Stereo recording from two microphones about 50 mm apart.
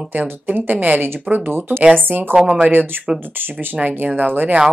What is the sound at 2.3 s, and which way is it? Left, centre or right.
Speech, centre.